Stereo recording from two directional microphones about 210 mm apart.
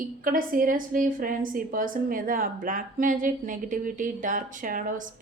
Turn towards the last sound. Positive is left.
turn(degrees=-40)  # may be behind; listen again after turning